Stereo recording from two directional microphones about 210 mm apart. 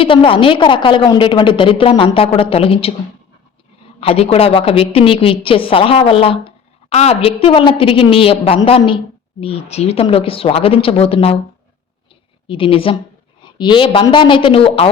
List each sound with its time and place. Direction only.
0.0 s a woman's voice: 25° left (ahead or behind)
4.0 s a woman's voice: 30° left (ahead or behind)
12.5 s a woman's voice: 25° left (ahead or behind)